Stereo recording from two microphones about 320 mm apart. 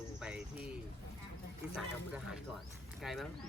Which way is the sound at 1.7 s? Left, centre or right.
Centre.